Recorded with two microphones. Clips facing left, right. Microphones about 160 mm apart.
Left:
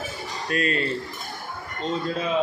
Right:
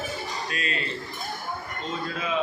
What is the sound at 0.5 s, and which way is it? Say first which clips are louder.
Speech: left 11 dB; 45° left (ahead or behind).